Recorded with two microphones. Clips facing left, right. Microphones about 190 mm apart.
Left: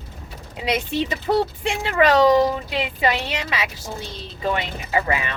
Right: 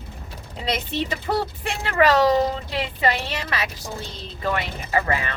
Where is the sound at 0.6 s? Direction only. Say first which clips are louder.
Left 3 dB; 15° left (ahead or behind).